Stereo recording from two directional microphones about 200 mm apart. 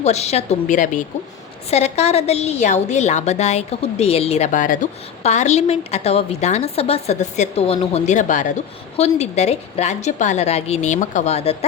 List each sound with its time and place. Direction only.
0.0 s a woman's voice: 35° left (ahead or behind)